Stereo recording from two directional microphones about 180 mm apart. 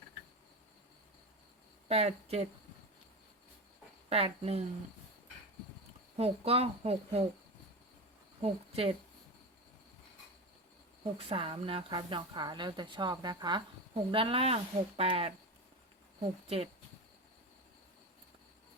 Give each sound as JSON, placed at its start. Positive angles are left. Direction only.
{"t": 1.9, "sound": "speech", "side_deg": -35}
{"t": 4.1, "sound": "speech", "side_deg": -35}
{"t": 6.1, "sound": "speech", "side_deg": -35}
{"t": 8.4, "sound": "a woman's voice", "side_deg": -35}
{"t": 11.0, "sound": "a woman's voice", "side_deg": -30}